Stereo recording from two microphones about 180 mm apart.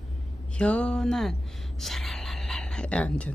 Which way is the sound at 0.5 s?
5° left (ahead or behind).